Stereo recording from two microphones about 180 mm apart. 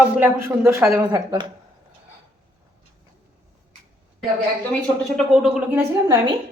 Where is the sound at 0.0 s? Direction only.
10° right (ahead or behind).